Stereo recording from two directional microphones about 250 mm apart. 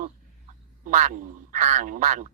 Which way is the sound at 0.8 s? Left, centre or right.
Right.